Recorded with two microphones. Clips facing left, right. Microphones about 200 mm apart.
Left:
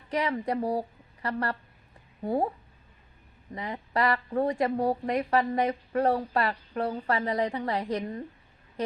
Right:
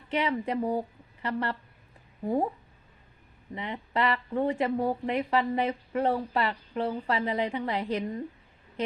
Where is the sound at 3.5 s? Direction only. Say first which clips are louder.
Left 1 dB; 35° left (ahead or behind).